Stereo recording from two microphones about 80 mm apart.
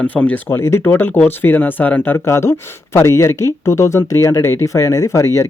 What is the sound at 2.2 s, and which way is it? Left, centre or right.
Speech, left.